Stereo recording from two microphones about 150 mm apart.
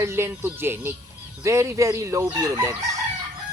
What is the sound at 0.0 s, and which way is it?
Speech, 15° right (ahead or behind).